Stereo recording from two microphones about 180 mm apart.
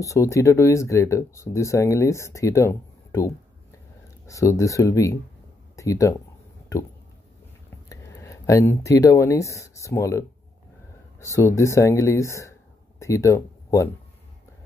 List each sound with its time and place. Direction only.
0.0 s speech: 15° left (ahead or behind)
7.9 s speech: 20° left (ahead or behind)